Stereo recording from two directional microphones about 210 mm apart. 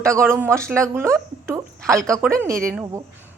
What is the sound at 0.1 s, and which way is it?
A woman's voice, 10° right (ahead or behind).